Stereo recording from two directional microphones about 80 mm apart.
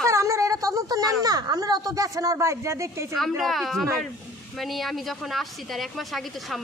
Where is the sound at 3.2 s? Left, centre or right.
Centre.